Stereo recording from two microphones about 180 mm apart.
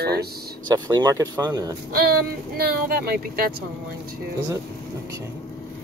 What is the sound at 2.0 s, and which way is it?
Speech, 55° right (ahead or behind).